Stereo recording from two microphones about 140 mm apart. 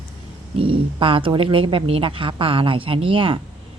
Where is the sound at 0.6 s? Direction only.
40° right (ahead or behind).